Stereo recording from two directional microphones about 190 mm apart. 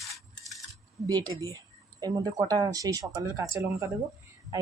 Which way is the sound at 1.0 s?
20° right (ahead or behind).